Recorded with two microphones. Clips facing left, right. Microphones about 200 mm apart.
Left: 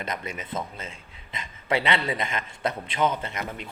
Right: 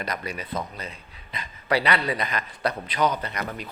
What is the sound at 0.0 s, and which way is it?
Speech, 20° left (ahead or behind).